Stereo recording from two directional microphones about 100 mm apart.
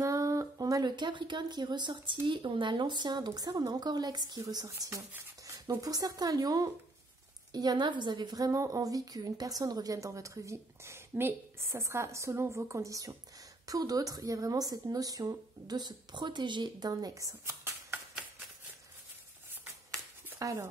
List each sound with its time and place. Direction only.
0.0 s a woman's voice: 35° right (ahead or behind)
20.3 s speech: 35° right (ahead or behind)